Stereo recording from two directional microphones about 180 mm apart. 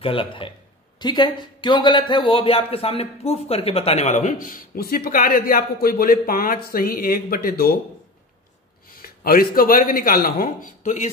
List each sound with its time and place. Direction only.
0.0 s a man's voice: 30° left (ahead or behind); by 7.7 s 60° left (ahead or behind)
8.9 s a man's voice: 55° left (ahead or behind)